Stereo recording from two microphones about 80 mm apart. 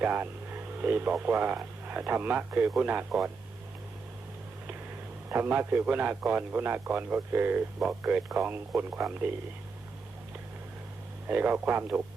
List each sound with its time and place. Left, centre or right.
0.0 s a sound: right
1.1 s a man's voice: centre
5.3 s a man's voice: right
11.3 s a man's voice: right